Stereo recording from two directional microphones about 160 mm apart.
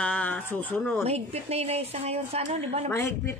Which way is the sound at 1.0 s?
40° right (ahead or behind).